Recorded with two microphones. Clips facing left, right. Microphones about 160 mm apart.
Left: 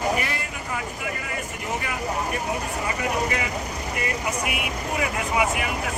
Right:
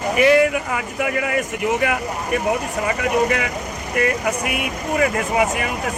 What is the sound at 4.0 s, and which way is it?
Speech, 60° right (ahead or behind).